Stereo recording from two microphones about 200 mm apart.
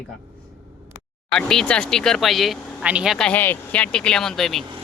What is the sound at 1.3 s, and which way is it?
Speech, 5° left (ahead or behind).